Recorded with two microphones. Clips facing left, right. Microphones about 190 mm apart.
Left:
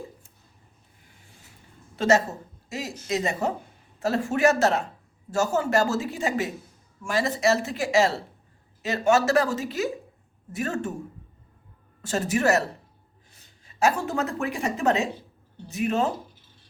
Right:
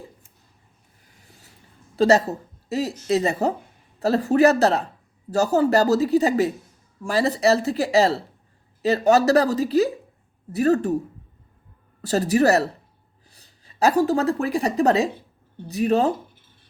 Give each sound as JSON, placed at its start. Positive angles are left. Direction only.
{"t": 2.0, "sound": "a woman's voice", "side_deg": -35}
{"t": 12.0, "sound": "a woman's voice", "side_deg": -35}